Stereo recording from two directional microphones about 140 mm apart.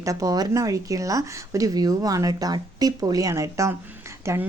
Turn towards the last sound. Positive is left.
turn(degrees=-20)  # may be behind; listen again after turning